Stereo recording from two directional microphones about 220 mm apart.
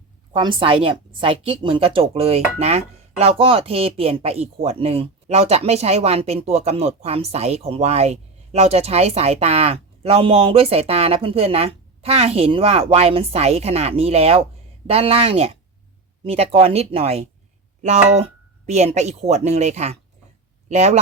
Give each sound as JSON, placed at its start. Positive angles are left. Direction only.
{"t": 0.3, "sound": "a woman's voice", "side_deg": -20}